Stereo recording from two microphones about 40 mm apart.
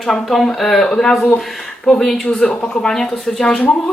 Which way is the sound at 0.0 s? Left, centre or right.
Centre.